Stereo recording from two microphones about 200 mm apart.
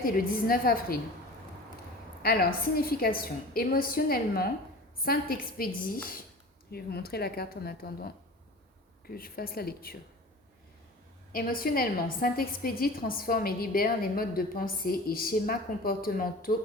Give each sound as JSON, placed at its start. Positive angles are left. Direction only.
{"t": 0.0, "sound": "a woman's voice", "side_deg": 45}
{"t": 2.2, "sound": "a woman's voice", "side_deg": 50}
{"t": 11.3, "sound": "a woman's voice", "side_deg": 45}